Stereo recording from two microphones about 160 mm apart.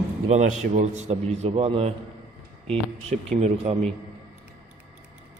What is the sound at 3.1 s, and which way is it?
Speech, 45° right (ahead or behind).